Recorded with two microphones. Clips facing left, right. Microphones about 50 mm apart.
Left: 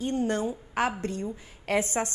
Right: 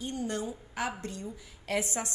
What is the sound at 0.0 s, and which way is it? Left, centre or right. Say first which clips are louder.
A woman's voice: left 7 dB; left.